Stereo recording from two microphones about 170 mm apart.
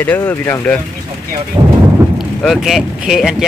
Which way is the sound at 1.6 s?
20° right (ahead or behind).